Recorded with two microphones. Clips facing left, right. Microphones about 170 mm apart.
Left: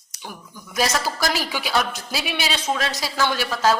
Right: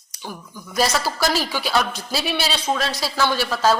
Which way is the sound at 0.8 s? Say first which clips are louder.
Right 2 dB; 15° left (ahead or behind).